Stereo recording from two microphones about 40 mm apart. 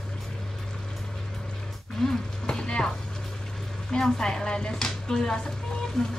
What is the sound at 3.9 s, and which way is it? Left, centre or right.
A woman's voice, centre.